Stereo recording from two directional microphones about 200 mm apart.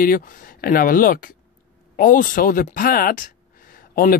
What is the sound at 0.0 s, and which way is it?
Speech, 45° left (ahead or behind).